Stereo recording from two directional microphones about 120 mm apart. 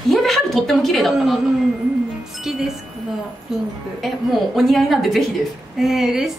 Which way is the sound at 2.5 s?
5° right (ahead or behind).